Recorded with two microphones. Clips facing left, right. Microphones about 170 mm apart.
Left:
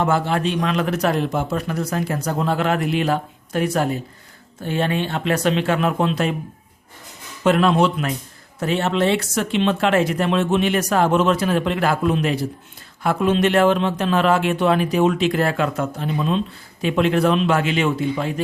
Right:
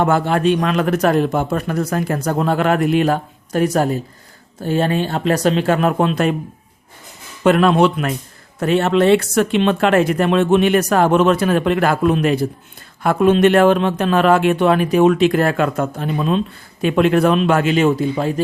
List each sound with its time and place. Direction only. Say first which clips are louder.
0.0 s a man's voice: right 4 dB; 55° right (ahead or behind)
7.4 s a man's voice: right 3 dB; 60° right (ahead or behind); by 18.4 s 40° right (ahead or behind)